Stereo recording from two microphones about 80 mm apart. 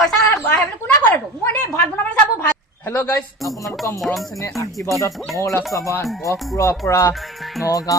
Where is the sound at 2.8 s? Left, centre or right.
Left.